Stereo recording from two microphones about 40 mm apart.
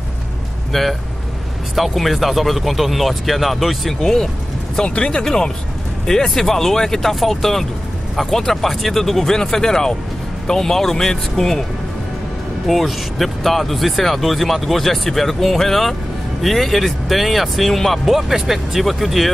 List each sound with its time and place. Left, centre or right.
0.7 s speech: centre
4.8 s speech: left; by 11.6 s centre
12.6 s speech: centre
18.1 s speech: centre